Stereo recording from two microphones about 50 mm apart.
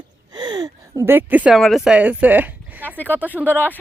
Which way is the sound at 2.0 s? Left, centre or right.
Right.